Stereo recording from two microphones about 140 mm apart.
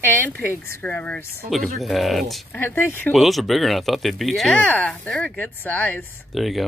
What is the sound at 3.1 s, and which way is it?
Speech, centre (ahead or behind).